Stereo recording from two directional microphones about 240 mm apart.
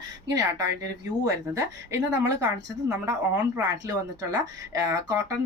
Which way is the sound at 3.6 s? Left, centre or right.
Centre.